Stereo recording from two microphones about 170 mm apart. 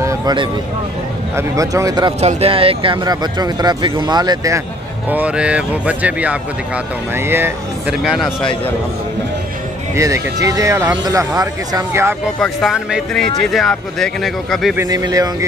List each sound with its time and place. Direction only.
0.0 s a sound: 20° right (ahead or behind)
1.3 s speech: 20° right (ahead or behind)
2.1 s speech: 35° right (ahead or behind)
5.1 s speech: 5° right (ahead or behind)
8.0 s speech: centre (ahead or behind)
9.9 s speech: 20° right (ahead or behind)
12.4 s speech: centre (ahead or behind)
14.8 s speech: 20° right (ahead or behind)